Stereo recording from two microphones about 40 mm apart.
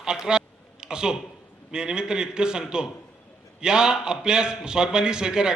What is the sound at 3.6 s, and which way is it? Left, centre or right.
A man's voice, centre.